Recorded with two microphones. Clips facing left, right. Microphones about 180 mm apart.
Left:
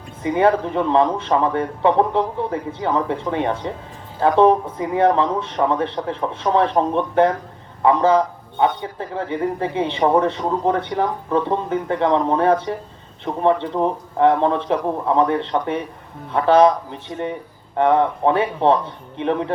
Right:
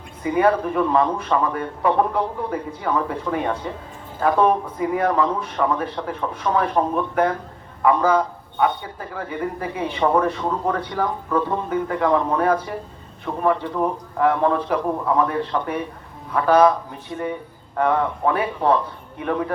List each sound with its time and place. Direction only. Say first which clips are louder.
0.2 s a man's voice: left 1 dB; 25° left (ahead or behind)